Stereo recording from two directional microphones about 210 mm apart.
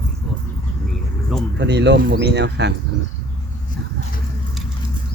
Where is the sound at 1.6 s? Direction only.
55° right (ahead or behind).